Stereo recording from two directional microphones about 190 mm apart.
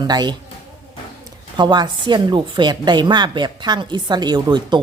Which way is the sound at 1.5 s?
25° right (ahead or behind).